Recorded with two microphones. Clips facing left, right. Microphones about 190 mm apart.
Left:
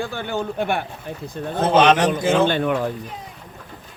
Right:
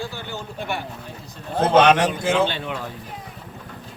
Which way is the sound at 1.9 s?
10° right (ahead or behind).